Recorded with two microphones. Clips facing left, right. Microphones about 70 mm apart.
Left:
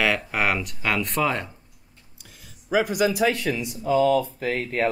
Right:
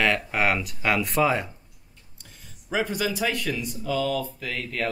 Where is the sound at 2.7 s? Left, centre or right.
Centre; by 4.8 s left.